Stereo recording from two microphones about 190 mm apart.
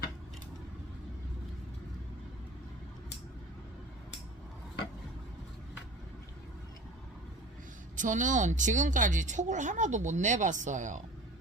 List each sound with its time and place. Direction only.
7.9 s speech: 40° right (ahead or behind)